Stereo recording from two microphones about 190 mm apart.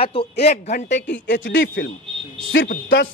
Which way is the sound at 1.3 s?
70° left (ahead or behind).